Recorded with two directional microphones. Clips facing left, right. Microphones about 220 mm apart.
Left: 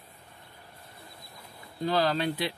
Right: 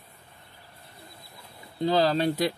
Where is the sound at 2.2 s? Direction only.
45° right (ahead or behind).